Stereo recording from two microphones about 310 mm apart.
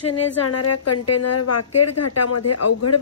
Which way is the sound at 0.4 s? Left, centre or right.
Left.